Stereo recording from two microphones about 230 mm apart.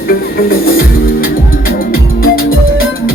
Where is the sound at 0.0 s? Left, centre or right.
Left.